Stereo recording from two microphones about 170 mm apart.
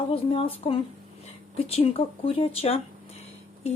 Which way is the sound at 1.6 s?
35° left (ahead or behind).